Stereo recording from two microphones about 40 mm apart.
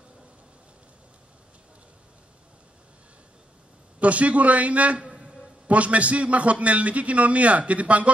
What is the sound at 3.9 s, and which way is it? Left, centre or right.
A man's voice, right.